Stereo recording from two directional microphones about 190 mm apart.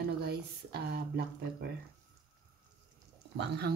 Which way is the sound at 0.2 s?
60° right (ahead or behind).